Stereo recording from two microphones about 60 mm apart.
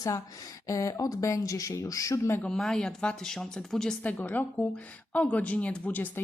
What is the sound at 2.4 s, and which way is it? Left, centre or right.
Speech, centre.